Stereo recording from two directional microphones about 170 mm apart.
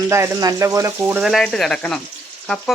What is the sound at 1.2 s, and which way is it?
Speech, centre (ahead or behind).